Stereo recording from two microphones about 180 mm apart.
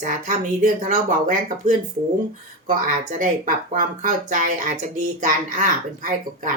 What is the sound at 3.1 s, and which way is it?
Speech, 50° right (ahead or behind).